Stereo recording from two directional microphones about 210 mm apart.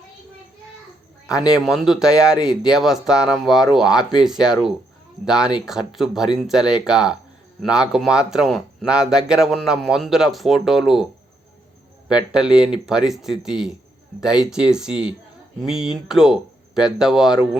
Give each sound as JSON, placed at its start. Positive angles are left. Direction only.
{"t": 1.4, "sound": "speech", "side_deg": -5}
{"t": 12.0, "sound": "speech", "side_deg": -5}